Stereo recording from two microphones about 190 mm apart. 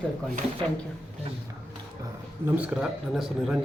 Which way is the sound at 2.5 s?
5° right (ahead or behind).